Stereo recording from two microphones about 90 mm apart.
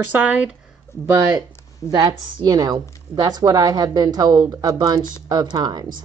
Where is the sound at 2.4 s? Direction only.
45° right (ahead or behind).